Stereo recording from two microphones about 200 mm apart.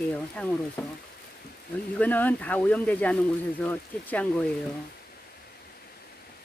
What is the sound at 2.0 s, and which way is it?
Speech, 10° left (ahead or behind).